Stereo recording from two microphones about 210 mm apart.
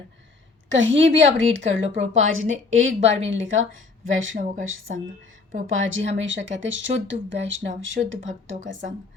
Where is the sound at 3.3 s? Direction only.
65° right (ahead or behind).